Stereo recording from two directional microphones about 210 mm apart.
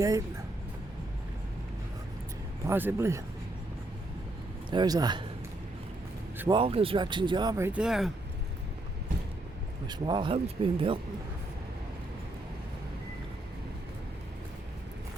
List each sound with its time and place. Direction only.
2.6 s speech: 10° right (ahead or behind)
4.7 s speech: 20° right (ahead or behind)
6.5 s speech: 25° right (ahead or behind); by 8.1 s centre (ahead or behind)
9.8 s speech: 20° right (ahead or behind)